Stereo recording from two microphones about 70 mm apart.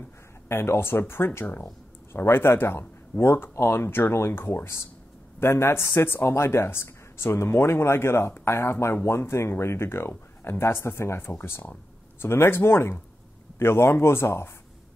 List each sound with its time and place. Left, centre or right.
0.5 s speech: left